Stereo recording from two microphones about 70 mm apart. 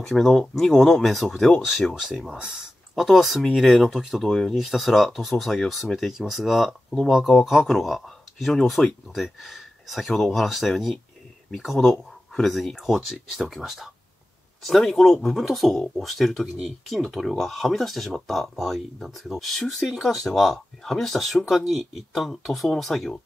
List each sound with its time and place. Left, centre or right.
0.0 s speech: centre
2.3 s speech: centre
2.9 s speech: centre